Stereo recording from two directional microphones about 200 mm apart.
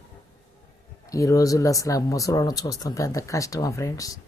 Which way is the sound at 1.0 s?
15° left (ahead or behind).